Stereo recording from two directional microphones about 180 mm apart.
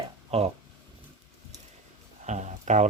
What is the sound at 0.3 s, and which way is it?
Speech, 35° right (ahead or behind).